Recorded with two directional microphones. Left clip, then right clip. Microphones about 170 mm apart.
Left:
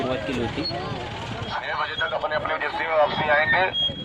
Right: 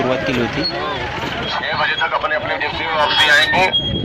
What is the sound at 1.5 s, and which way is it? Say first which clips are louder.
Vehicle: right 7 dB; 30° right (ahead or behind).